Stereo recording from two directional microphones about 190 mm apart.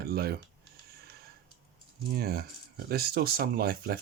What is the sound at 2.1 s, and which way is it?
Speech, 55° right (ahead or behind).